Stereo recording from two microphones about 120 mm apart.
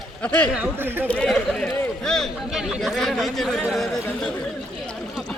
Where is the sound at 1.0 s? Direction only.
10° left (ahead or behind).